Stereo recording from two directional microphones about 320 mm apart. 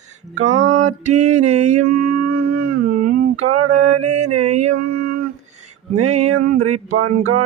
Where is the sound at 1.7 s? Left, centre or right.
Right.